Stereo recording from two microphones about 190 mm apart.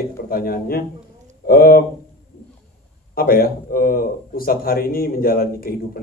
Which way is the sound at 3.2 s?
50° left (ahead or behind).